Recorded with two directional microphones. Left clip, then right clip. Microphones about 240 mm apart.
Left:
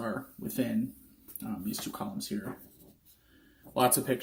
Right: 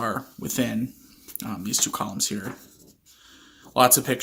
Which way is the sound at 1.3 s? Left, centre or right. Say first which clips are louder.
Right 11 dB; right.